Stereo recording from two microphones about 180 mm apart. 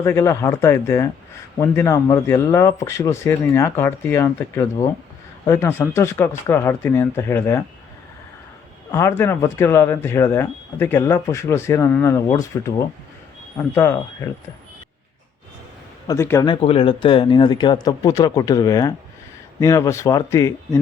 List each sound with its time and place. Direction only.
0.0 s speech: 15° left (ahead or behind)
8.9 s speech: 15° left (ahead or behind)
13.7 s speech: 15° left (ahead or behind)
16.0 s speech: 15° left (ahead or behind)
16.5 s speech: 30° left (ahead or behind)